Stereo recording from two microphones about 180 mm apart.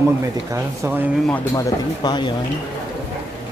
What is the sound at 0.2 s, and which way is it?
Speech, 15° right (ahead or behind).